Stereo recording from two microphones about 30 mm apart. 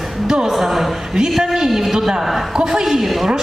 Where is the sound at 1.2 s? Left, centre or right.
Right.